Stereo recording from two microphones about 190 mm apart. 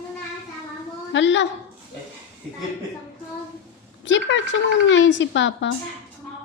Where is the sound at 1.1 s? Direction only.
70° left (ahead or behind).